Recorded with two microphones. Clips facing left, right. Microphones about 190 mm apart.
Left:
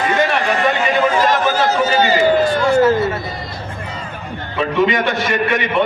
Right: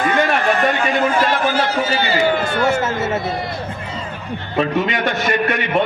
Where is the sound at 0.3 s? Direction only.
40° right (ahead or behind).